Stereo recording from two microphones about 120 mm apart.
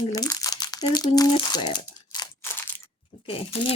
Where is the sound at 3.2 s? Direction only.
50° left (ahead or behind).